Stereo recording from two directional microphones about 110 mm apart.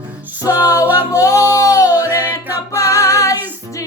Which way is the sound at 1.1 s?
30° left (ahead or behind).